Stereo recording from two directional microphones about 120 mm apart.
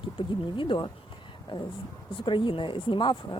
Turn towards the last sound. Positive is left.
turn(degrees=40)  # may be behind; listen again after turning